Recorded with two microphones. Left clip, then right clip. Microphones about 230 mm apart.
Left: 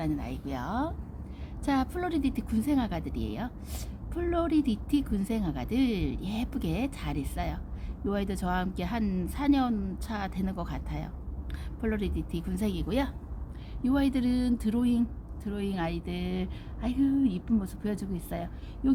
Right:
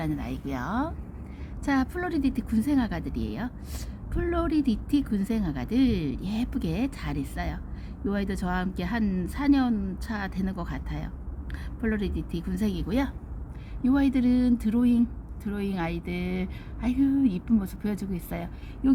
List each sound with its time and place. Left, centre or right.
0.0 s speech: centre